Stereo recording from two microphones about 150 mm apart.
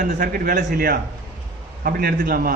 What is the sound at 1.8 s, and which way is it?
Speech, 90° right.